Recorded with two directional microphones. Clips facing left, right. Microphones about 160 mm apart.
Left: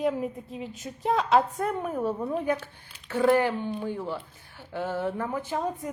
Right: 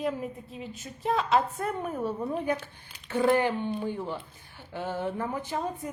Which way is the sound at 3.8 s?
15° right (ahead or behind).